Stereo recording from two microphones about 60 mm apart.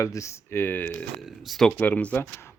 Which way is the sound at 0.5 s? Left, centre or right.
Left.